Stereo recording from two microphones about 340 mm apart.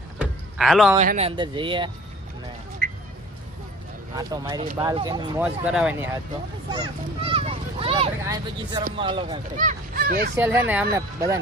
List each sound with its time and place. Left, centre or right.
0.2 s vehicle: centre
0.9 s speech: centre
2.8 s vehicle: right
4.1 s speech: centre
10.3 s speech: centre